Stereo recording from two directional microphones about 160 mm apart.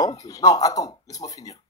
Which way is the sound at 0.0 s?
20° left (ahead or behind).